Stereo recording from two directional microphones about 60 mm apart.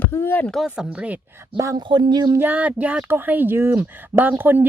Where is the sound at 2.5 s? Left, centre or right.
Right.